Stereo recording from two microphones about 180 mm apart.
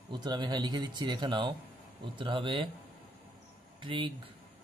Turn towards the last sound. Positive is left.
turn(degrees=-25)  # may be behind; listen again after turning